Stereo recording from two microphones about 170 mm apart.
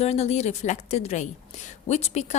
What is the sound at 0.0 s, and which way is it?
Speech, 40° left (ahead or behind).